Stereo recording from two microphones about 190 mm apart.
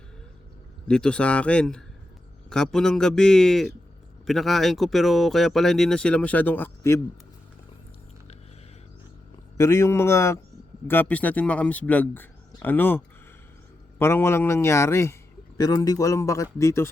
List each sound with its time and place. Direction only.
0.9 s speech: 5° left (ahead or behind)
9.6 s speech: 15° left (ahead or behind)
14.0 s speech: 15° left (ahead or behind)